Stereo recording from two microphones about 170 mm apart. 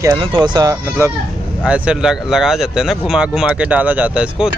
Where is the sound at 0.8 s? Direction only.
15° right (ahead or behind).